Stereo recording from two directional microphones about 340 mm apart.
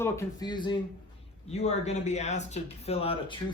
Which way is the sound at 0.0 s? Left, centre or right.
Centre.